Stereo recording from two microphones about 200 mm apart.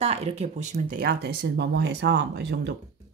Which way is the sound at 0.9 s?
50° right (ahead or behind).